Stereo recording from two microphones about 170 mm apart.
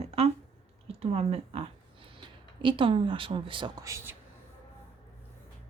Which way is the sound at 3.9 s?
15° right (ahead or behind).